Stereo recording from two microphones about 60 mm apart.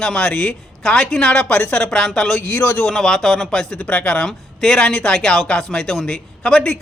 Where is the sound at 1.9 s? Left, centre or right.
Centre.